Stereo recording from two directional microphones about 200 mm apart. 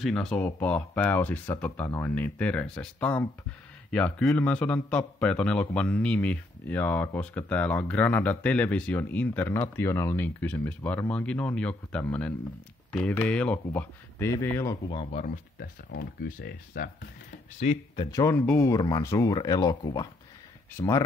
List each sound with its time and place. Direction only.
0.0 s a man's voice: 5° left (ahead or behind); by 15.2 s 30° left (ahead or behind)
15.9 s speech: 65° left (ahead or behind)
16.3 s speech: 45° left (ahead or behind)
17.6 s speech: 35° left (ahead or behind)
17.9 s a man's voice: 15° left (ahead or behind)